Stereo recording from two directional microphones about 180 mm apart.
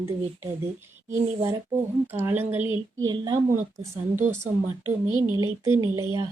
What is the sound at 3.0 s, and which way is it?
Speech, 25° right (ahead or behind).